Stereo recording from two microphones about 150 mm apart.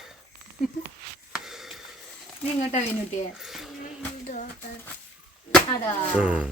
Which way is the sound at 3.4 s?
Centre (ahead or behind).